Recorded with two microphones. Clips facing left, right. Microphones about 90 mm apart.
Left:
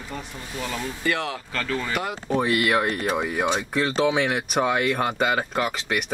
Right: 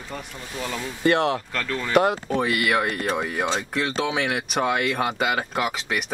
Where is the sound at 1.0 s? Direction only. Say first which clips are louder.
Right 7 dB; 55° right (ahead or behind).